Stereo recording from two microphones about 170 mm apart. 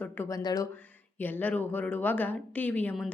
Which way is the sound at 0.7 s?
10° left (ahead or behind).